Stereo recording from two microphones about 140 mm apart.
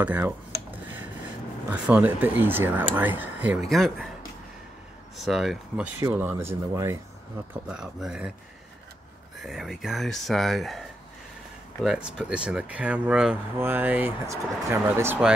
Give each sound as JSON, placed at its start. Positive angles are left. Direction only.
{"t": 0.0, "sound": "speech", "side_deg": -10}
{"t": 1.7, "sound": "speech", "side_deg": -10}
{"t": 3.6, "sound": "speech", "side_deg": 0}
{"t": 5.1, "sound": "speech", "side_deg": 0}
{"t": 7.6, "sound": "speech", "side_deg": -5}
{"t": 9.4, "sound": "speech", "side_deg": 0}
{"t": 11.8, "sound": "speech", "side_deg": -5}